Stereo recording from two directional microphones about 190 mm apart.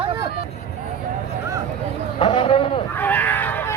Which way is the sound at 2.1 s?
30° left (ahead or behind).